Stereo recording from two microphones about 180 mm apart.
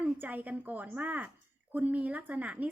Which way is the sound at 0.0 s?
10° right (ahead or behind).